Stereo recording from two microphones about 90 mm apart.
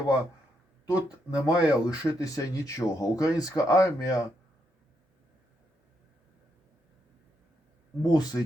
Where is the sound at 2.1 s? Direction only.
40° left (ahead or behind).